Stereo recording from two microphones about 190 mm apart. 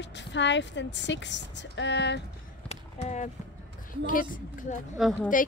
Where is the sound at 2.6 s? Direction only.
40° left (ahead or behind).